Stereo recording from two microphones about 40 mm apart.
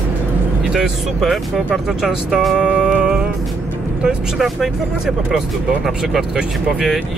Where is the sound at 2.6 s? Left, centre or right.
Right.